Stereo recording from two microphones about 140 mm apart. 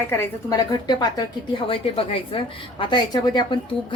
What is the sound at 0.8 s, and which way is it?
A woman's voice, 30° left (ahead or behind).